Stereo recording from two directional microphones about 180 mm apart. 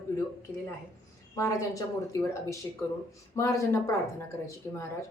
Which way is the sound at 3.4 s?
15° left (ahead or behind).